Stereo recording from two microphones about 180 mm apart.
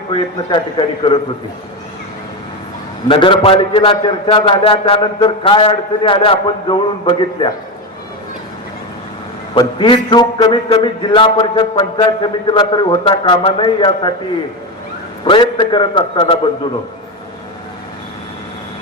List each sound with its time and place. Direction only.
0.1 s a man's voice: 30° left (ahead or behind)
3.1 s a man's voice: 30° left (ahead or behind)
9.6 s a man's voice: 25° left (ahead or behind)
15.2 s a man's voice: 25° left (ahead or behind)